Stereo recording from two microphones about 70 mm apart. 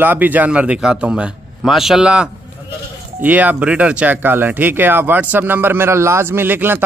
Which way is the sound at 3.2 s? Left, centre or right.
Right.